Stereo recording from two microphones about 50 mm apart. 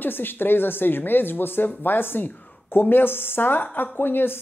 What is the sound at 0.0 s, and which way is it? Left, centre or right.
Speech, left.